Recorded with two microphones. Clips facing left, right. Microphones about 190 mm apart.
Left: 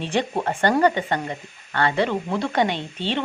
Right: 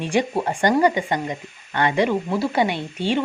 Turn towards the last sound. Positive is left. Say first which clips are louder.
# right 3 dB
turn(degrees=-10)  # may be behind; listen again after turning